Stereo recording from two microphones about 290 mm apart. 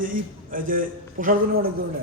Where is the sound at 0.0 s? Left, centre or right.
Right.